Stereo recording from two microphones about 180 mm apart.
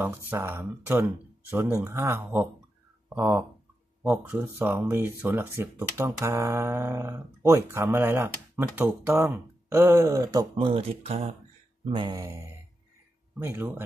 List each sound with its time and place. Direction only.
0.0 s speech: 10° right (ahead or behind); by 11.3 s 35° right (ahead or behind)
11.9 s speech: 25° right (ahead or behind)